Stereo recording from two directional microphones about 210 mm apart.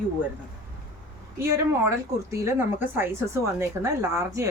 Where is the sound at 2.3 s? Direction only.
15° right (ahead or behind).